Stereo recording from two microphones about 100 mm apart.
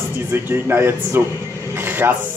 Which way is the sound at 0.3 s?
25° right (ahead or behind).